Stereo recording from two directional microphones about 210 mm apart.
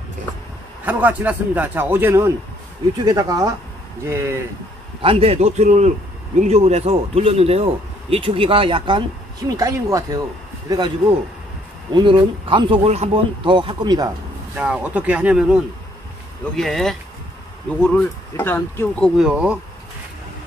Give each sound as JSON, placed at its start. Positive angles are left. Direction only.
{"t": 0.8, "sound": "a man's voice", "side_deg": -10}
{"t": 5.0, "sound": "speech", "side_deg": -30}
{"t": 14.5, "sound": "speech", "side_deg": -5}
{"t": 18.3, "sound": "speech", "side_deg": 10}